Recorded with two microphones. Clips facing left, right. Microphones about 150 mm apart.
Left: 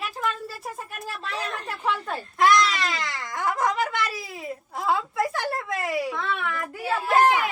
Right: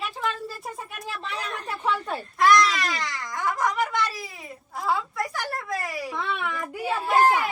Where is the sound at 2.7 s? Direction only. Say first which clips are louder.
Even; 25° left (ahead or behind).